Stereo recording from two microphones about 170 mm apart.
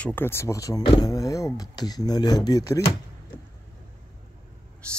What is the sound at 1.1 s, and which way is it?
Speech, 20° left (ahead or behind).